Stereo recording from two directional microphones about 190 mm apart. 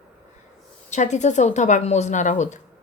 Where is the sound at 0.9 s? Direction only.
40° left (ahead or behind).